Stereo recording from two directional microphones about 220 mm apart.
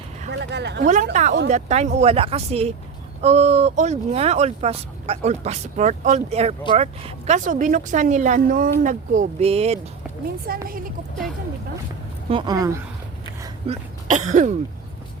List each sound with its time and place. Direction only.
0.3 s speech: 50° right (ahead or behind)
1.1 s speech: 35° right (ahead or behind)
10.4 s speech: 40° right (ahead or behind)
12.3 s speech: 20° right (ahead or behind)
13.7 s speech: 30° right (ahead or behind)